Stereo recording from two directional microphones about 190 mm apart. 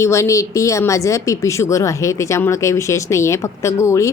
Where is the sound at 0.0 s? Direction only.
15° left (ahead or behind).